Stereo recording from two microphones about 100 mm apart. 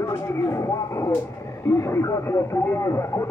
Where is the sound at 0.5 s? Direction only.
30° left (ahead or behind).